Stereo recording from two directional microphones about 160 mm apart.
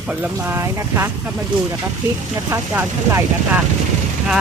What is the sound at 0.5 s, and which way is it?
Speech, 15° right (ahead or behind).